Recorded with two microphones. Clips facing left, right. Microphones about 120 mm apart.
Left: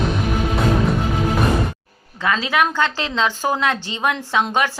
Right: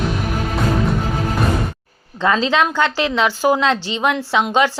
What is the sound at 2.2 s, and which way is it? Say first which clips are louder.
A woman's voice: right 3 dB; 25° right (ahead or behind).